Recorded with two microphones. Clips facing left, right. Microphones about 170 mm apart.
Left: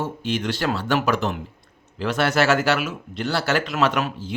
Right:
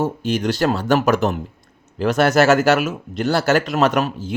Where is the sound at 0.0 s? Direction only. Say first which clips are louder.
Right 5 dB; 40° right (ahead or behind).